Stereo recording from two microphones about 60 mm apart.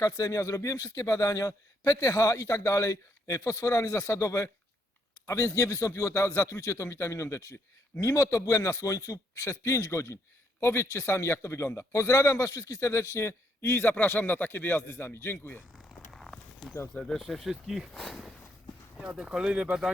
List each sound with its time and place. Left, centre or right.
0.0 s a man's voice: left
13.9 s speech: left
16.1 s walk: centre
16.9 s speech: centre
18.9 s speech: centre